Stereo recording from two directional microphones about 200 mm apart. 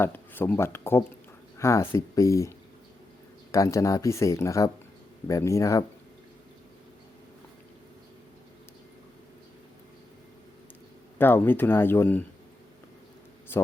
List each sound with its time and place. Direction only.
0.0 s speech: 10° left (ahead or behind)
3.5 s speech: 15° left (ahead or behind)
11.2 s speech: 10° left (ahead or behind)
13.5 s a sound: 10° left (ahead or behind)